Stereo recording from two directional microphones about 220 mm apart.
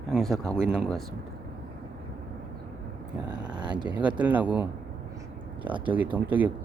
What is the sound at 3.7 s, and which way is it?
Speech, 20° right (ahead or behind).